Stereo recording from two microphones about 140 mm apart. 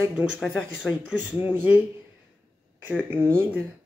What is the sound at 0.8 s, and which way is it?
Speech, 10° right (ahead or behind).